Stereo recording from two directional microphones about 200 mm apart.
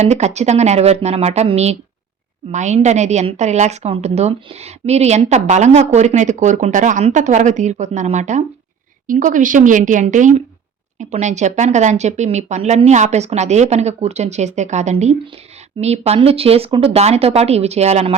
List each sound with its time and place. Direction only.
0.0 s a woman's voice: 35° right (ahead or behind)